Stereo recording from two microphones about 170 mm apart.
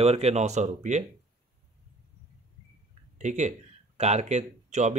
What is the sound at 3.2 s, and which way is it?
Speech, 45° right (ahead or behind).